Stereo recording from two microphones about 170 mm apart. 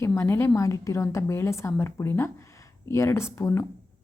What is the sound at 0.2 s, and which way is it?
A woman's voice, 15° left (ahead or behind).